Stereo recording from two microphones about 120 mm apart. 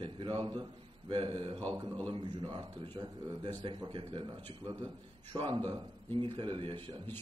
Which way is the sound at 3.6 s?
45° right (ahead or behind).